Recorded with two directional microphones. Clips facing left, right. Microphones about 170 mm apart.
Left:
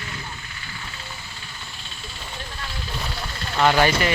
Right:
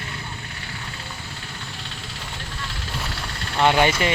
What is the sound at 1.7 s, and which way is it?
Vehicle, 80° right.